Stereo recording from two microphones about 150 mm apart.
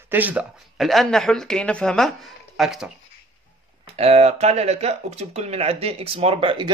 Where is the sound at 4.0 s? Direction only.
45° right (ahead or behind).